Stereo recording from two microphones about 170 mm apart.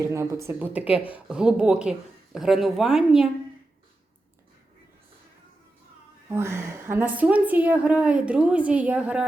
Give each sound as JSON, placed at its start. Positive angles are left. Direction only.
{"t": 0.0, "sound": "a woman's voice", "side_deg": -15}
{"t": 6.2, "sound": "a woman's voice", "side_deg": -15}